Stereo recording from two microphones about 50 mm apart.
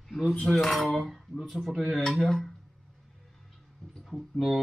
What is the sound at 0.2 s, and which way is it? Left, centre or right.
Cutlery, centre.